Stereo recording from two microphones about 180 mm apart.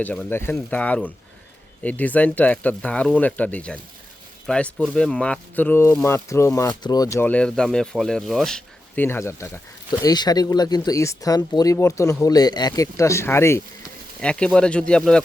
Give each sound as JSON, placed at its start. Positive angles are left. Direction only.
{"t": 0.0, "sound": "speech", "side_deg": 5}